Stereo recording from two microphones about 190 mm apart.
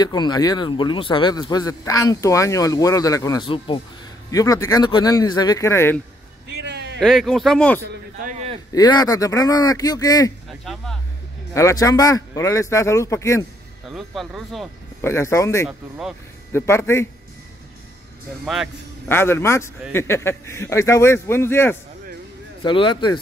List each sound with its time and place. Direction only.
0.0 s speech: 20° left (ahead or behind)
6.6 s a sound: 65° right (ahead or behind)
7.0 s speech: centre (ahead or behind)
8.2 s a sound: 40° right (ahead or behind)
8.7 s speech: 20° left (ahead or behind)
10.6 s speech: centre (ahead or behind)
11.5 s speech: 15° left (ahead or behind)
13.8 s speech: centre (ahead or behind)
15.0 s speech: 15° left (ahead or behind)
18.4 s speech: centre (ahead or behind)
19.0 s speech: 10° left (ahead or behind)
22.6 s speech: 25° left (ahead or behind)